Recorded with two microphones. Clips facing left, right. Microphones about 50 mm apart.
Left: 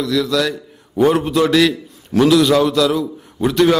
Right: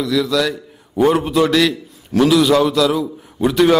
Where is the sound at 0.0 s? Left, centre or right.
Centre.